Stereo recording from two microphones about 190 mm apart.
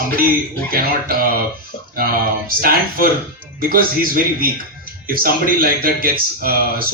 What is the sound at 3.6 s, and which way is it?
A man's voice, 50° right (ahead or behind).